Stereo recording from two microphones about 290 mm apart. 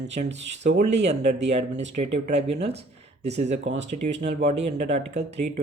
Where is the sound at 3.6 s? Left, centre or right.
Right.